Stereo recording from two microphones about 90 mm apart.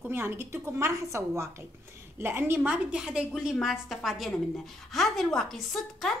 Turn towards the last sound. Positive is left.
turn(degrees=5)  # may be behind; listen again after turning